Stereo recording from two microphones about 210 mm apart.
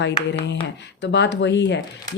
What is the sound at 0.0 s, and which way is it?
Speech, 55° left (ahead or behind).